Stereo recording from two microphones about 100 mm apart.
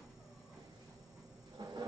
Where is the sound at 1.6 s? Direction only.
45° right (ahead or behind).